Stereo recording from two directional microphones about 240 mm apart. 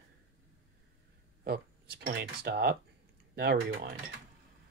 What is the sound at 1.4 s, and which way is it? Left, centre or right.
Speech, right.